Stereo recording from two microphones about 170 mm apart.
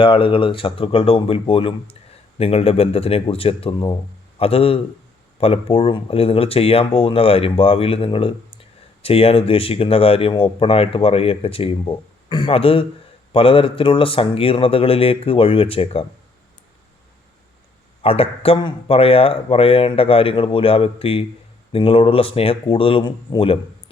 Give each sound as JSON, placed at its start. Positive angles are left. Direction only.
{"t": 0.0, "sound": "a man's voice", "side_deg": 30}
{"t": 18.0, "sound": "speech", "side_deg": 35}